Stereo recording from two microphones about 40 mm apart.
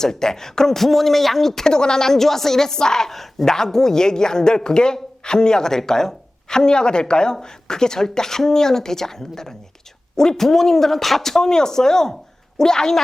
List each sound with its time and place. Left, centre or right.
0.0 s speech: centre